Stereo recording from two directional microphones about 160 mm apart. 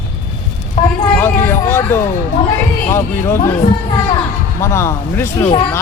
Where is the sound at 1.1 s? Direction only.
15° left (ahead or behind).